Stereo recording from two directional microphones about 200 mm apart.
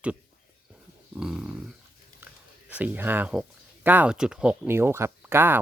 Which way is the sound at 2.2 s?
10° right (ahead or behind).